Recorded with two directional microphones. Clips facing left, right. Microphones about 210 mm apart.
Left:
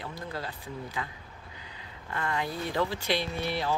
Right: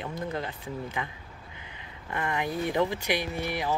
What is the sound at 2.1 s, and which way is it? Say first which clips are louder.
Speech: right 2 dB; 20° right (ahead or behind).